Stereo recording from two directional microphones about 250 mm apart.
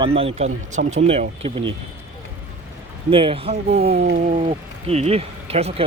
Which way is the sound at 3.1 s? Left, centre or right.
Right.